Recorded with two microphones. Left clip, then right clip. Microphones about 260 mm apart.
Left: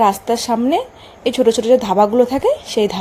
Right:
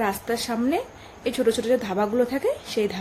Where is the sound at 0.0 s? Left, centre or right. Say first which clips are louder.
Left 11 dB; left.